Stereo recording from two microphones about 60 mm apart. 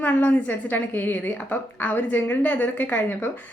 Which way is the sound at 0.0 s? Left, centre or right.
Left.